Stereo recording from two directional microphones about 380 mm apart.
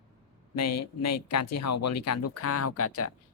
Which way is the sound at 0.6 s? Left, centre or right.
Left.